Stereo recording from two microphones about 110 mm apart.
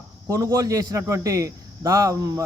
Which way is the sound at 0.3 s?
30° right (ahead or behind).